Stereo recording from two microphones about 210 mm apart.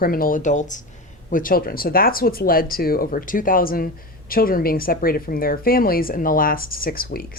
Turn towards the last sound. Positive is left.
turn(degrees=45)  # may be behind; listen again after turning